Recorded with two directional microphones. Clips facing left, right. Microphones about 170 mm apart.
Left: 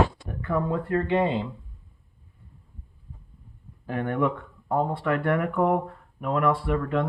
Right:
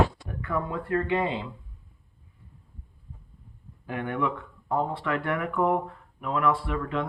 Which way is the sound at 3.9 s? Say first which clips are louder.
Left 3 dB; 40° left (ahead or behind).